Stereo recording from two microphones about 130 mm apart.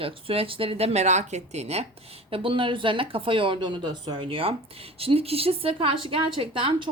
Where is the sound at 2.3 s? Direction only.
40° right (ahead or behind).